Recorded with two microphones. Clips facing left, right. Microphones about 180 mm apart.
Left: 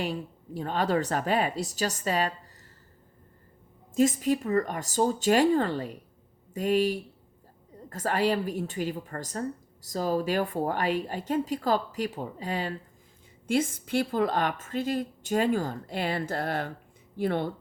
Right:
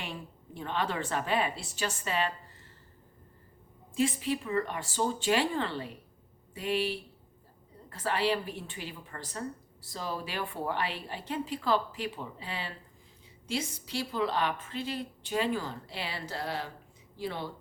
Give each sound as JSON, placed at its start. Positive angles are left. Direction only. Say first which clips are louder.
{"t": 0.0, "sound": "a woman's voice", "louder": "left 9 dB", "side_deg": 40}
{"t": 3.9, "sound": "a woman's voice", "louder": "left 6 dB", "side_deg": 45}